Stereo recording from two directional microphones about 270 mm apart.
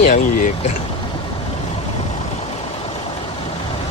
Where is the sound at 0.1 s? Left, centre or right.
Left.